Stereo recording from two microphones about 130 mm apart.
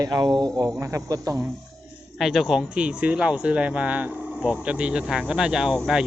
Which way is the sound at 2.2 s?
Centre (ahead or behind).